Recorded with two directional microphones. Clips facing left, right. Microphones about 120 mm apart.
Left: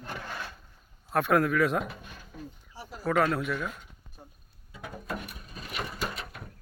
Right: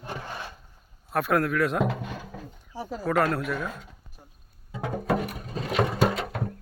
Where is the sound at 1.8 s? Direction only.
90° right.